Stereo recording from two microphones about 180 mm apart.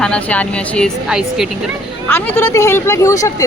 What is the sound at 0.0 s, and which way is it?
Speech, 5° left (ahead or behind).